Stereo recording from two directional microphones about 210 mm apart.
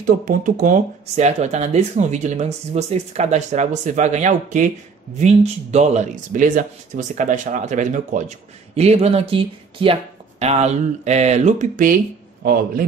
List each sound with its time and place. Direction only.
0.0 s speech: 40° right (ahead or behind)